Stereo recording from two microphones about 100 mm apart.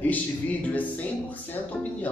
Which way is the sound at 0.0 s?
15° left (ahead or behind).